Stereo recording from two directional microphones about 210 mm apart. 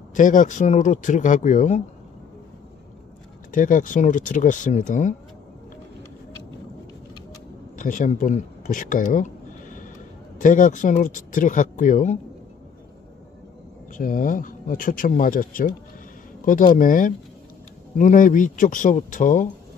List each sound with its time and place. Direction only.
0.1 s speech: 35° left (ahead or behind)
3.5 s speech: 40° left (ahead or behind)
7.7 s a sound: 40° left (ahead or behind)
10.4 s speech: 40° left (ahead or behind)
13.9 s speech: 40° left (ahead or behind)